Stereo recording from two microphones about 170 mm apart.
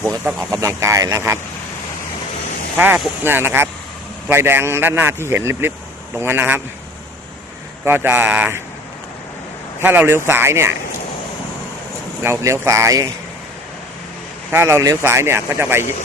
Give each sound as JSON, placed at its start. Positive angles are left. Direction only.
{"t": 0.3, "sound": "a man's voice", "side_deg": -15}
{"t": 2.7, "sound": "a man's voice", "side_deg": -10}
{"t": 7.9, "sound": "a man's voice", "side_deg": -10}
{"t": 9.8, "sound": "a man's voice", "side_deg": -10}
{"t": 12.2, "sound": "a man's voice", "side_deg": -15}
{"t": 14.5, "sound": "a man's voice", "side_deg": -15}